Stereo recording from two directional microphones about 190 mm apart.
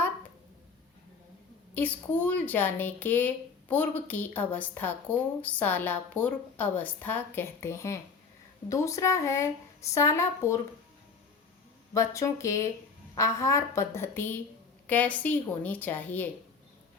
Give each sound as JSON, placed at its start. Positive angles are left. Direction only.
{"t": 1.7, "sound": "a woman's voice", "side_deg": 10}
{"t": 11.9, "sound": "a woman's voice", "side_deg": 15}